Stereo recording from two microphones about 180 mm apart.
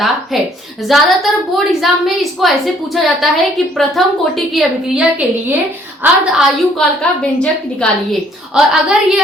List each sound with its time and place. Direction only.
0.3 s a woman's voice: centre (ahead or behind)